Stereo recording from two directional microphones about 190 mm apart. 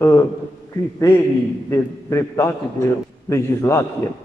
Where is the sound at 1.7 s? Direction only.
15° left (ahead or behind).